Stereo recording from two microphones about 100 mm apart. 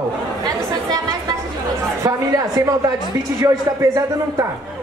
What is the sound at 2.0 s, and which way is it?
A man's voice, 40° right (ahead or behind).